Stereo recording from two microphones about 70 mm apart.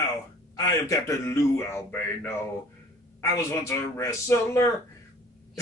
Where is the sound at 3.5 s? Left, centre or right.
Left.